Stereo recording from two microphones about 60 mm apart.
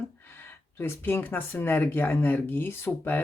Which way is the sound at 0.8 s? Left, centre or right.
Left.